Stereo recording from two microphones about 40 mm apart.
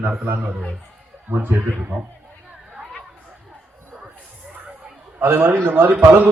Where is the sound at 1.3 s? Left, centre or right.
Right.